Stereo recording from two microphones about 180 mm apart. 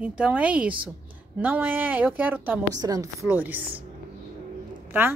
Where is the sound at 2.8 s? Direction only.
20° right (ahead or behind).